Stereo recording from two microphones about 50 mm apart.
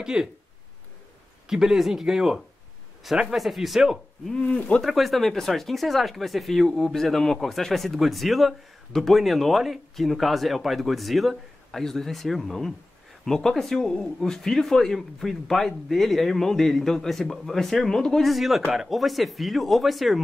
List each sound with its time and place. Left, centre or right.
0.0 s speech: centre
1.5 s speech: centre
4.5 s speech: left
4.8 s speech: centre
18.3 s speech: centre